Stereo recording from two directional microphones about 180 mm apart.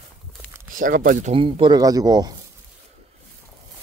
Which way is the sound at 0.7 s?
50° right (ahead or behind).